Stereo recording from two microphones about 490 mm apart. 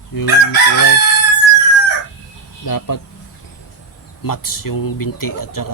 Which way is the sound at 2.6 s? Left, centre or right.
Left.